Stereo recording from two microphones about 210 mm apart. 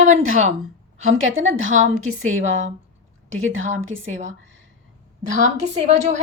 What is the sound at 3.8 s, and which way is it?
Speech, 70° right (ahead or behind).